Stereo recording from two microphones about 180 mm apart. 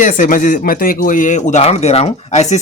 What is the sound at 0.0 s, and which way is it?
Speech, 45° left (ahead or behind).